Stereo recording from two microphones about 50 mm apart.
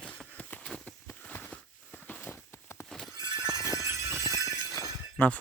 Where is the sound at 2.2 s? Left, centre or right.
Left.